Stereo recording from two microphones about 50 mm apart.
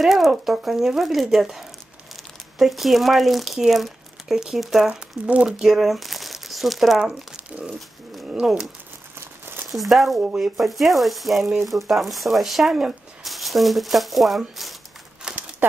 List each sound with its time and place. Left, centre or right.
0.0 s speech: centre
4.8 s speech: centre
5.6 s speech: centre
7.5 s speech: right
8.4 s crumpling: centre
9.7 s speech: centre
15.2 s a sound: centre